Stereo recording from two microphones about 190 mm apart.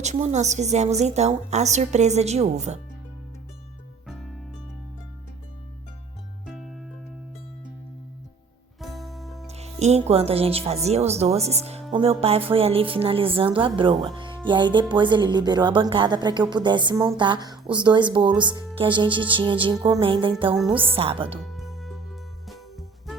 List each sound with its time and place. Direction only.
0.0 s speech: 35° right (ahead or behind)
4.0 s music: centre (ahead or behind)
6.4 s music: centre (ahead or behind)
8.8 s music: centre (ahead or behind)
9.5 s speech: 35° right (ahead or behind)
21.4 s music: centre (ahead or behind)